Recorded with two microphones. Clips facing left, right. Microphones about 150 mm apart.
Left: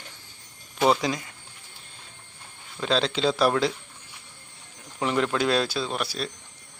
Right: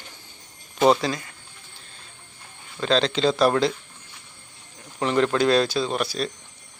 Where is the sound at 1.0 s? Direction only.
20° left (ahead or behind).